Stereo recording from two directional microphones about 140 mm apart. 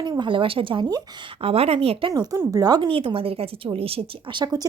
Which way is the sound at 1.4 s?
45° right (ahead or behind).